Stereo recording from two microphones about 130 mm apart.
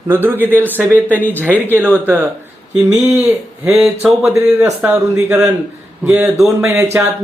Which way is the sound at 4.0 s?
5° right (ahead or behind).